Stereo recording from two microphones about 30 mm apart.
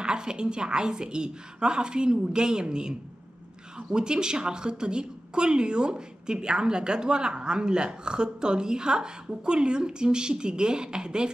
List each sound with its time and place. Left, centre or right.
0.0 s a woman's voice: right